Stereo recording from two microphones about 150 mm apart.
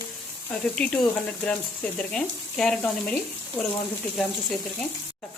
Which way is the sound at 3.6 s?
20° left (ahead or behind).